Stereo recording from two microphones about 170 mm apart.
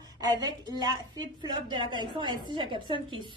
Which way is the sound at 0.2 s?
25° right (ahead or behind).